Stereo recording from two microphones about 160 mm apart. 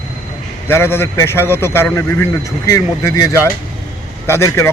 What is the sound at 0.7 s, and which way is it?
A man's voice, 15° left (ahead or behind).